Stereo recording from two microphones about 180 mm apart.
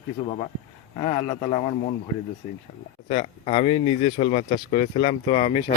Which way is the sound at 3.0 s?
35° left (ahead or behind).